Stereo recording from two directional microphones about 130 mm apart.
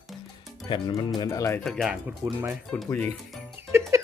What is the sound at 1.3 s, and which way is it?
Speech, 25° left (ahead or behind).